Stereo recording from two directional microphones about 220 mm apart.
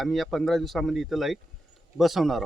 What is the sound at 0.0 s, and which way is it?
Speech, centre (ahead or behind).